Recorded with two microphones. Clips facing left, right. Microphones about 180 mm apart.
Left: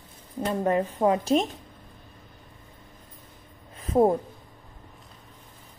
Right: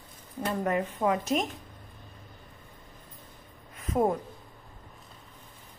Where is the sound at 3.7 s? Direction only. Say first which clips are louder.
Left 6 dB; 30° left (ahead or behind).